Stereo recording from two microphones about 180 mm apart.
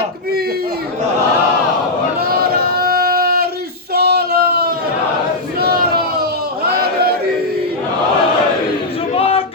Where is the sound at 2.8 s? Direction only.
55° right (ahead or behind).